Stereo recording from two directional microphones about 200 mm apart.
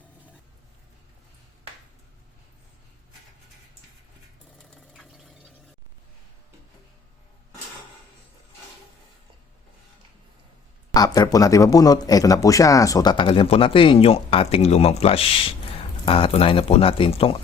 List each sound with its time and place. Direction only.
4.5 s water: centre (ahead or behind)
10.9 s speech: 20° left (ahead or behind)